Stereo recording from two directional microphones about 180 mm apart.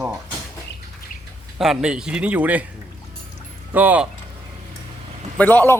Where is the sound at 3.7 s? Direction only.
10° right (ahead or behind).